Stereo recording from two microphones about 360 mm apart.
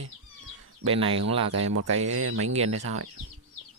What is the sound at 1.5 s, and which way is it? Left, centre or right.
Speech, right.